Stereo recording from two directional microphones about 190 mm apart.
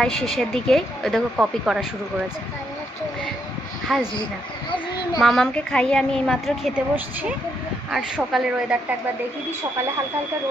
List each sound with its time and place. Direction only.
0.0 s speech: 5° left (ahead or behind)
3.9 s speech: centre (ahead or behind)
4.6 s a child's voice: 25° left (ahead or behind)
5.2 s speech: centre (ahead or behind)
7.9 s speech: centre (ahead or behind)